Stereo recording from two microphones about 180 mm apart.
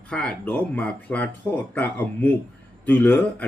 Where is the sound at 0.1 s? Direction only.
5° left (ahead or behind).